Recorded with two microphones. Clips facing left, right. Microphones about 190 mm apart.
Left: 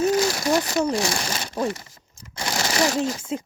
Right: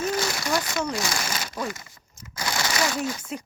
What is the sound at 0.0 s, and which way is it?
Speech, 35° left (ahead or behind).